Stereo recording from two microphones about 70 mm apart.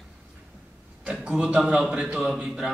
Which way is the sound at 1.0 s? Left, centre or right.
Centre.